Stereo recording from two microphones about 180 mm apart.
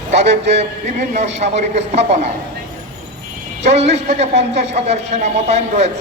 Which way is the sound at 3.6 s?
40° right (ahead or behind).